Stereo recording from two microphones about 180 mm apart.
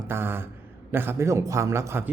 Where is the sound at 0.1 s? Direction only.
15° right (ahead or behind).